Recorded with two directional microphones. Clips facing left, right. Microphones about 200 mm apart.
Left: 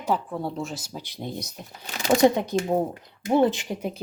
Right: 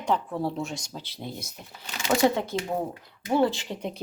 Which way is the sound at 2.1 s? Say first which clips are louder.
Left 4 dB; 20° left (ahead or behind).